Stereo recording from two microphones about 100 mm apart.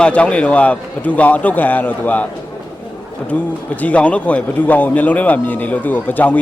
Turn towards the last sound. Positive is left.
turn(degrees=15)  # may be behind; listen again after turning